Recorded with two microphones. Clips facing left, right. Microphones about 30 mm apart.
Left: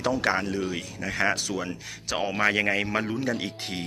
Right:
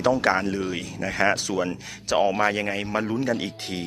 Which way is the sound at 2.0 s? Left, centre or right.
Centre.